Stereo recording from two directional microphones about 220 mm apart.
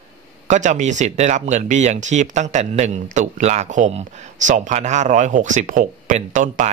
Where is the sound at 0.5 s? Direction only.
35° right (ahead or behind).